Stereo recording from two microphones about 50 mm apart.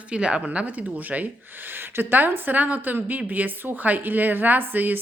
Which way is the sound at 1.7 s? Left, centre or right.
Right.